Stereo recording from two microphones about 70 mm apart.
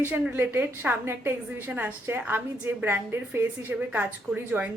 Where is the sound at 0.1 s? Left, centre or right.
Right.